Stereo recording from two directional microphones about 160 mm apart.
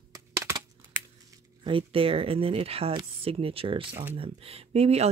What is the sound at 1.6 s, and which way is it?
Speech, 35° right (ahead or behind).